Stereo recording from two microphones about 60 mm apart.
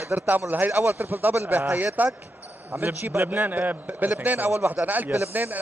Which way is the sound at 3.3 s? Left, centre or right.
Right.